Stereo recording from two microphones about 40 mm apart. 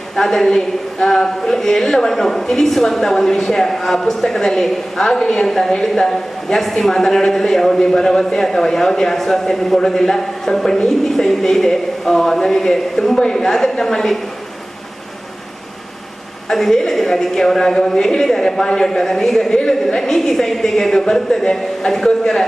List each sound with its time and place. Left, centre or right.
0.2 s a woman's voice: centre
16.5 s a woman's voice: centre
19.5 s a woman's voice: centre
20.1 s a woman's voice: centre